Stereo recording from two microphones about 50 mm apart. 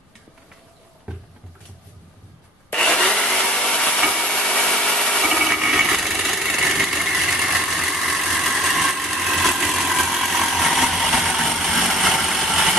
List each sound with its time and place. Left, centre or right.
2.7 s wood: centre
5.4 s engine: centre